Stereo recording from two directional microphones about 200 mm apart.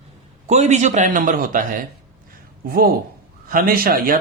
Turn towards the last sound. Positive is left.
turn(degrees=-45)  # may be behind; listen again after turning